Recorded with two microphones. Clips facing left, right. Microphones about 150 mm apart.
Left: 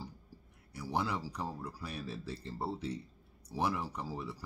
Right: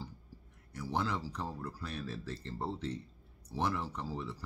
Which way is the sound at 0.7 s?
10° left (ahead or behind).